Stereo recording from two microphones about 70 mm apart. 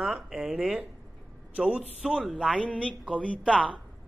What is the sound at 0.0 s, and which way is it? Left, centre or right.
A man's voice, centre.